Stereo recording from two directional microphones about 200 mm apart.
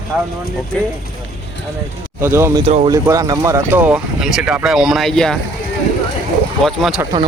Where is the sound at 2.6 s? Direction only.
30° right (ahead or behind).